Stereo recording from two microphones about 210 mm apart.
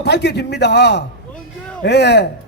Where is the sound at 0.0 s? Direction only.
55° left (ahead or behind).